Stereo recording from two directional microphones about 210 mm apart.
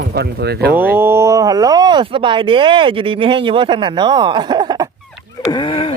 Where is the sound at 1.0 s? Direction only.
10° right (ahead or behind).